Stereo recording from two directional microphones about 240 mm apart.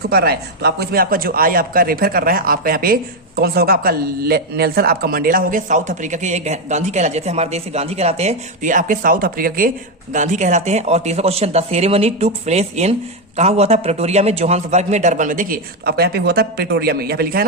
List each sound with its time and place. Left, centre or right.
0.1 s speech: right